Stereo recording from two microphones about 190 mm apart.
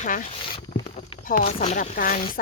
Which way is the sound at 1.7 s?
45° left (ahead or behind).